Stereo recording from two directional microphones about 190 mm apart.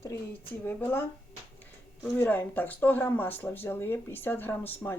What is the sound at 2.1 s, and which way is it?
Speech, 10° left (ahead or behind).